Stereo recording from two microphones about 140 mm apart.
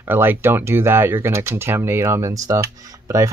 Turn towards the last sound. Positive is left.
turn(degrees=-20)  # may be behind; listen again after turning